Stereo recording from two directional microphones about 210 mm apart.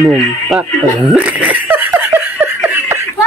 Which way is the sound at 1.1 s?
5° right (ahead or behind).